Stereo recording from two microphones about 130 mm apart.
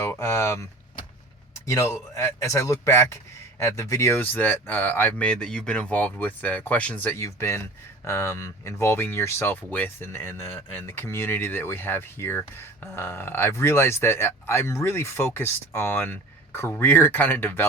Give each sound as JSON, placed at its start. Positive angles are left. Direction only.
{"t": 0.0, "sound": "speech", "side_deg": 20}
{"t": 1.6, "sound": "speech", "side_deg": 20}